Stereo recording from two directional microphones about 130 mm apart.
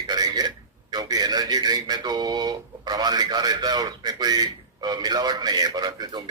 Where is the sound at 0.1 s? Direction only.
30° right (ahead or behind).